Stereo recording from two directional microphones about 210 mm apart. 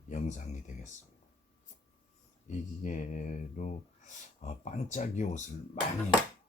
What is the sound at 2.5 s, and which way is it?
Speech, 35° left (ahead or behind).